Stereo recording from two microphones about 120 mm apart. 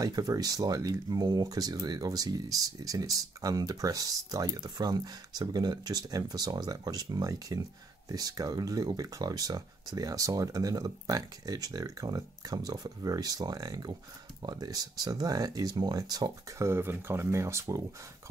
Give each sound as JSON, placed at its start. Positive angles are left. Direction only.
{"t": 0.0, "sound": "speech", "side_deg": -30}